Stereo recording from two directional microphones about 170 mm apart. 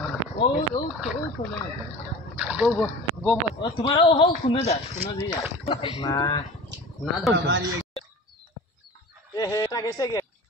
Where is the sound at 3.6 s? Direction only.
30° left (ahead or behind).